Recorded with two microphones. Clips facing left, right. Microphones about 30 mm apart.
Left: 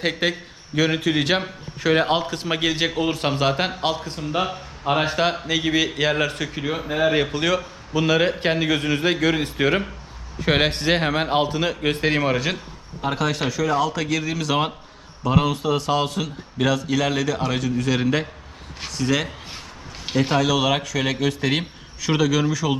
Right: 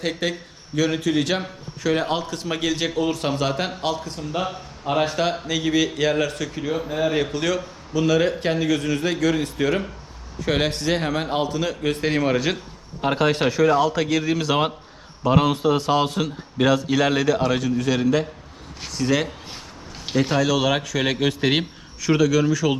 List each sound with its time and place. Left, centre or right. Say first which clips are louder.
0.0 s a man's voice: left 2 dB; left; by 12.5 s centre
13.0 s speech: right 3 dB; centre
13.7 s a man's voice: right 3 dB; centre
18.0 s a man's voice: right 2 dB; centre
18.9 s speech: right 1 dB; centre
20.1 s speech: even; centre
21.2 s a man's voice: right 2 dB; centre
21.6 s a man's voice: right 1 dB; centre